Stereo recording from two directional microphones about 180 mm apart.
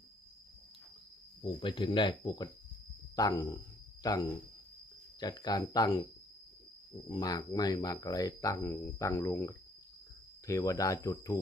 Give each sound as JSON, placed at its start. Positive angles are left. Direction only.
{"t": 1.6, "sound": "speech", "side_deg": 25}
{"t": 7.1, "sound": "speech", "side_deg": 20}